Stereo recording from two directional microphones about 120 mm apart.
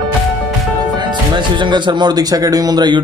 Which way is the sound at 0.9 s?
40° right (ahead or behind).